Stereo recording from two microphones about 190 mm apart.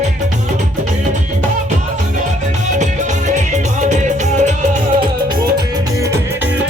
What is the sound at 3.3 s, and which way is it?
Music, 40° right (ahead or behind).